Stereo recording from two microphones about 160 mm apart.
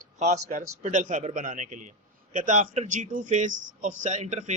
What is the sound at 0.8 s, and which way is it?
A man's voice, 50° right (ahead or behind).